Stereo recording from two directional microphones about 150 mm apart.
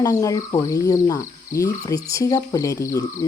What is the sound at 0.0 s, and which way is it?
Speech, 20° left (ahead or behind).